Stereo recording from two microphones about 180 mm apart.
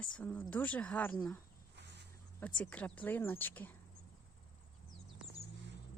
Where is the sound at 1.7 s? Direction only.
70° right (ahead or behind).